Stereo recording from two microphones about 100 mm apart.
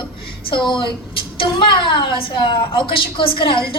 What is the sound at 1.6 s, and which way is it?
A woman's voice, 55° left (ahead or behind).